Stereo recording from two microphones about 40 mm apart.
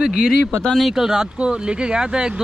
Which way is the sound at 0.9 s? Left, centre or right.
Centre.